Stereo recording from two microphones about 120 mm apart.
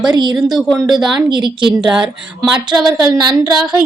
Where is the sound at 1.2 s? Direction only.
40° right (ahead or behind).